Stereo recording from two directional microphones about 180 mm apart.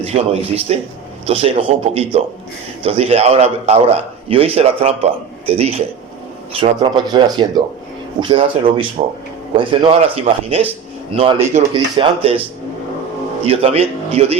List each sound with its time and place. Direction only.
0.0 s a man's voice: 35° right (ahead or behind)
6.6 s a man's voice: 25° right (ahead or behind)
13.4 s a man's voice: 35° right (ahead or behind)